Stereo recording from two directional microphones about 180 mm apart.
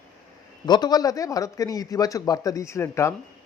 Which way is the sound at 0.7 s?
25° left (ahead or behind).